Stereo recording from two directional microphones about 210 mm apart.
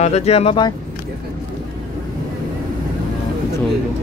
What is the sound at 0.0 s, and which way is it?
Speech, 30° left (ahead or behind).